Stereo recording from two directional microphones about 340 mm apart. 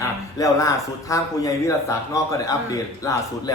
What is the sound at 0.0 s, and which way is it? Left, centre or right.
A man's voice, centre.